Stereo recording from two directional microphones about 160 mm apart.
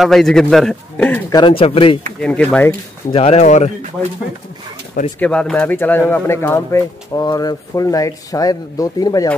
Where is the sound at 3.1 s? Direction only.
40° left (ahead or behind).